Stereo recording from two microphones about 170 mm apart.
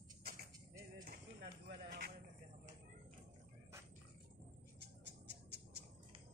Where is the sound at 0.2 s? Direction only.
65° right (ahead or behind).